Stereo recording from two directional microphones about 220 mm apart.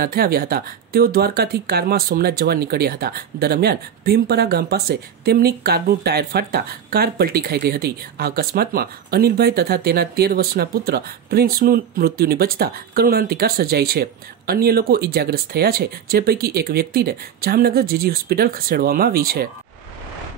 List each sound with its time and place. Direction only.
0.0 s speech: 45° right (ahead or behind)